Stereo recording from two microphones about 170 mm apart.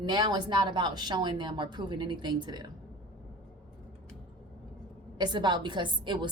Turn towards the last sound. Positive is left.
turn(degrees=-30)  # may be behind; listen again after turning